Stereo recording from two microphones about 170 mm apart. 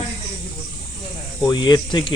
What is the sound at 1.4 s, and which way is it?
Speech, 25° left (ahead or behind).